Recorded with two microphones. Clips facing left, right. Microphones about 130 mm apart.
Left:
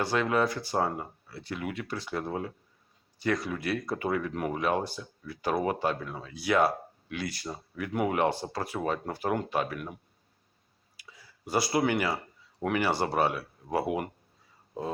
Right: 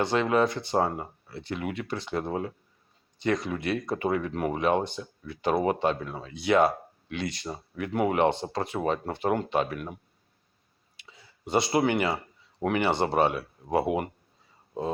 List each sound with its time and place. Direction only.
0.0 s speech: 20° right (ahead or behind)
10.9 s a sound: 25° right (ahead or behind)
11.7 s speech: 20° right (ahead or behind)